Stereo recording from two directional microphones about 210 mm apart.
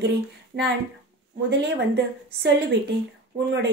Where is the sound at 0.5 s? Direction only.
50° right (ahead or behind).